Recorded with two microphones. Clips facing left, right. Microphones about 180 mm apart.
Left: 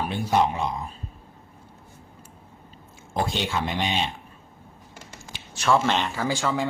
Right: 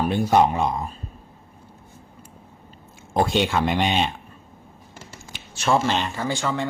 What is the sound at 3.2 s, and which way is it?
Speech, 60° right (ahead or behind).